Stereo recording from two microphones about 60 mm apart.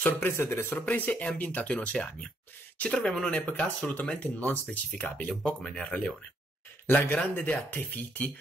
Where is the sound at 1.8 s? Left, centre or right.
Centre.